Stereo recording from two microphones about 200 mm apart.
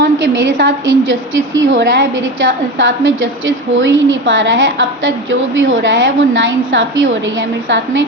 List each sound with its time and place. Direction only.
0.0 s a woman's voice: 65° right (ahead or behind)